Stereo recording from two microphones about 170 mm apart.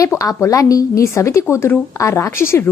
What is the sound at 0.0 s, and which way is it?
A woman's voice, 20° left (ahead or behind).